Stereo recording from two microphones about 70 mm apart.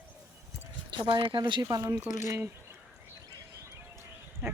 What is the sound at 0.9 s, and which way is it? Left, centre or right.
Speech, right.